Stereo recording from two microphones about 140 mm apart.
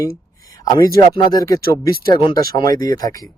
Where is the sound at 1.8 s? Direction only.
90° right.